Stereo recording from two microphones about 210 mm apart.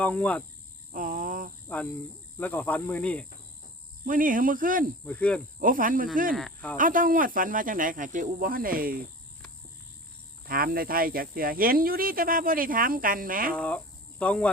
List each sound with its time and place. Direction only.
0.0 s speech: 5° left (ahead or behind)
0.9 s a sound: 40° right (ahead or behind)
1.6 s speech: 5° left (ahead or behind)
4.0 s speech: 40° right (ahead or behind)
5.0 s speech: 5° left (ahead or behind)
5.5 s speech: 40° right (ahead or behind)
6.3 s speech: 5° left (ahead or behind)
6.7 s speech: 40° right (ahead or behind)
10.4 s speech: 45° right (ahead or behind)
13.5 s speech: 5° left (ahead or behind)